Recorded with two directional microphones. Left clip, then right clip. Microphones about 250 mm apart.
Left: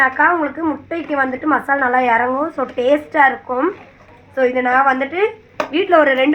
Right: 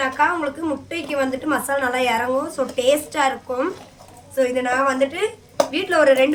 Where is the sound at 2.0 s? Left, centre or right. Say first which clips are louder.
Left 5 dB; centre.